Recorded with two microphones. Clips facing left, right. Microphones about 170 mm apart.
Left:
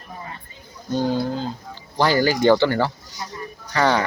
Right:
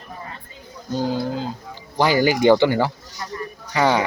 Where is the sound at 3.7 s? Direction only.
15° right (ahead or behind).